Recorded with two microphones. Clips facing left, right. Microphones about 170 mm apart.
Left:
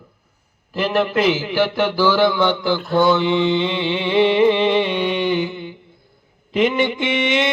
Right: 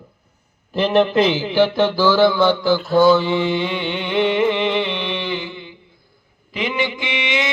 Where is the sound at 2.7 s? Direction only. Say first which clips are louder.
Right 3 dB; 5° right (ahead or behind).